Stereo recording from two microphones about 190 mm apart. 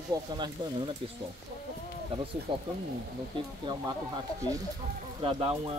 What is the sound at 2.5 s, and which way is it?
Speech, 30° right (ahead or behind).